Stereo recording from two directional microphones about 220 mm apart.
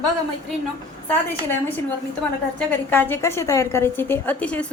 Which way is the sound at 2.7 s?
10° left (ahead or behind).